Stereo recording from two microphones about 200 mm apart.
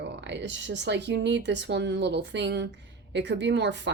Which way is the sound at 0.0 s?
60° right (ahead or behind).